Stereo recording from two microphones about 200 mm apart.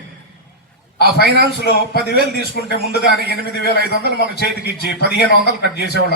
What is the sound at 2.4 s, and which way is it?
A man's voice, 55° left (ahead or behind).